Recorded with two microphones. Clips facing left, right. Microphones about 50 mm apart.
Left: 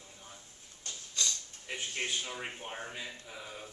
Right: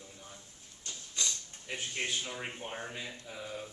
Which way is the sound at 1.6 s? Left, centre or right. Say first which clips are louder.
Even; centre.